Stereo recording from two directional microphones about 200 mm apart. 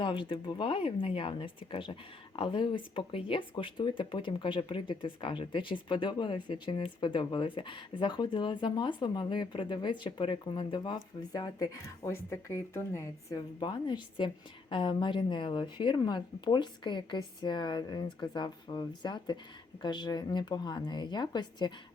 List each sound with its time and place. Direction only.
0.0 s speech: 25° left (ahead or behind)